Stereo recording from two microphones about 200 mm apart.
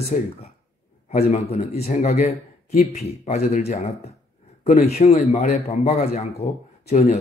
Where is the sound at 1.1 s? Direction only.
45° left (ahead or behind).